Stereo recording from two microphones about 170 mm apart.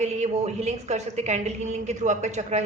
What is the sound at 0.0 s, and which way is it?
Speech, 40° right (ahead or behind).